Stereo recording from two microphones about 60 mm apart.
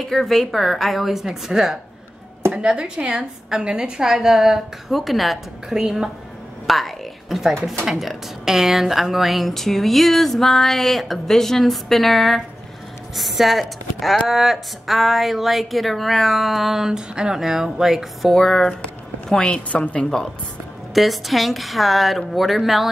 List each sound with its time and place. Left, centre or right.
0.1 s a woman's voice: centre
6.7 s music: centre
7.8 s speech: centre
18.3 s speech: centre
18.8 s a sound: centre
19.7 s a woman's voice: centre
20.9 s speech: centre